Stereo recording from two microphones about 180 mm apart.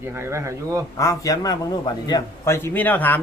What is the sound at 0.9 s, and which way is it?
A man's voice, 20° left (ahead or behind).